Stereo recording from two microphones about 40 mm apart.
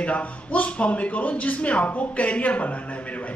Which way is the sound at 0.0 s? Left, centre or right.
Left.